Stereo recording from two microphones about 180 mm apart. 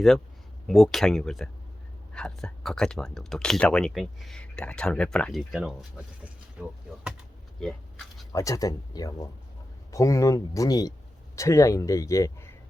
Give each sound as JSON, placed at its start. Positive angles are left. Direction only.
{"t": 0.7, "sound": "speech", "side_deg": 0}
{"t": 7.6, "sound": "a sound", "side_deg": 5}
{"t": 8.3, "sound": "speech", "side_deg": 20}